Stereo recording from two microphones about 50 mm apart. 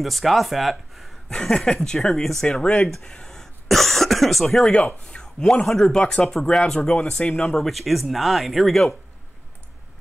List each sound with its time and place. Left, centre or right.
0.0 s speech: centre
1.3 s speech: centre
4.7 s speech: left
5.7 s speech: centre
6.8 s speech: left
7.7 s speech: centre